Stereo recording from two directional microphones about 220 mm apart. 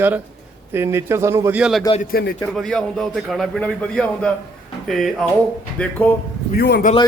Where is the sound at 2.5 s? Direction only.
Centre (ahead or behind).